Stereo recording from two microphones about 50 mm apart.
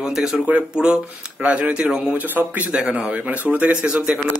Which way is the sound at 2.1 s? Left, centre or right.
Right.